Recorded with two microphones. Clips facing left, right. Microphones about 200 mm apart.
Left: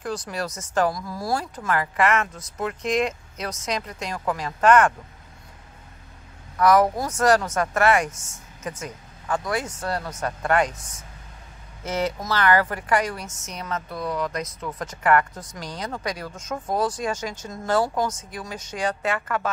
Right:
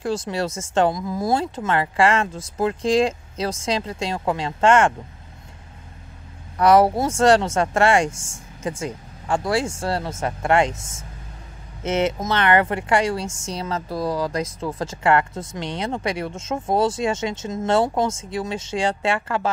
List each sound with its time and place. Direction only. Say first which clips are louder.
0.0 s speech: right 5 dB; 25° right (ahead or behind)
6.5 s speech: right 3 dB; 30° right (ahead or behind)